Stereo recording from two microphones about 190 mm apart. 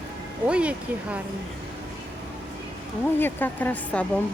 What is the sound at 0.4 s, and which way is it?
Speech, 5° right (ahead or behind).